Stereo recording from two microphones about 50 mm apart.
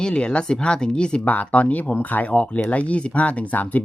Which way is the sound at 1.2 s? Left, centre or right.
Left.